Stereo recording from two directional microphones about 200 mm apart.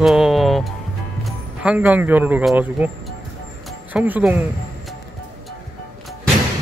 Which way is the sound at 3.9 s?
5° right (ahead or behind).